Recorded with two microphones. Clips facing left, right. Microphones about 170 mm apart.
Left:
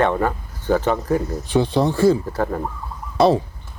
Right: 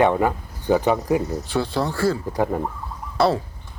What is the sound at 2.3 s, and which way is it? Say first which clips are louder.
Speech: right 1 dB; 15° right (ahead or behind).